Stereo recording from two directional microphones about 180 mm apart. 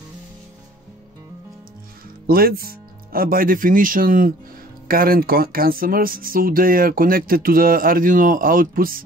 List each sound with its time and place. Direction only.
2.2 s speech: 55° right (ahead or behind)